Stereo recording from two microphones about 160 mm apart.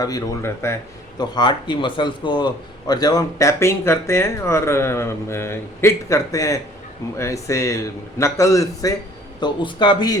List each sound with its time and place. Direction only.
0.0 s a man's voice: 20° left (ahead or behind)
1.2 s a man's voice: 25° left (ahead or behind)